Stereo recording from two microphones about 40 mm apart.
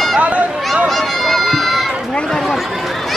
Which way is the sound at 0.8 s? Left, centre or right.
Centre.